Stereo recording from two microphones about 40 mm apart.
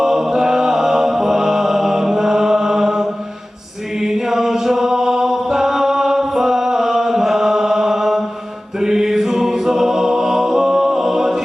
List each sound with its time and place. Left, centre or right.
0.0 s music: centre
4.0 s chant: centre
8.8 s music: centre